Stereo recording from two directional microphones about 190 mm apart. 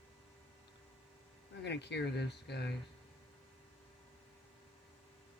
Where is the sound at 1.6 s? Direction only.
65° left (ahead or behind).